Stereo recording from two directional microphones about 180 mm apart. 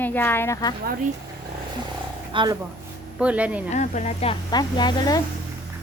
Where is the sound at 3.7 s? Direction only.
40° left (ahead or behind).